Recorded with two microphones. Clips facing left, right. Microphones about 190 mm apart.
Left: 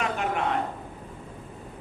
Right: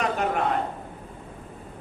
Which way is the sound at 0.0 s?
40° right (ahead or behind).